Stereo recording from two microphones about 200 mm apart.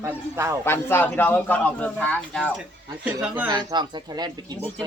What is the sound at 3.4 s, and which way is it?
Speech, 20° right (ahead or behind).